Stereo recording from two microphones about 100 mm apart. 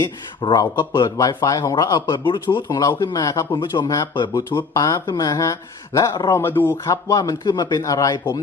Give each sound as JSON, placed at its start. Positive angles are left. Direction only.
{"t": 0.0, "sound": "speech", "side_deg": 50}
{"t": 2.6, "sound": "speech", "side_deg": 40}
{"t": 3.5, "sound": "speech", "side_deg": 50}
{"t": 3.8, "sound": "speech", "side_deg": 35}
{"t": 4.1, "sound": "speech", "side_deg": 50}
{"t": 6.3, "sound": "speech", "side_deg": 20}
{"t": 6.8, "sound": "speech", "side_deg": 35}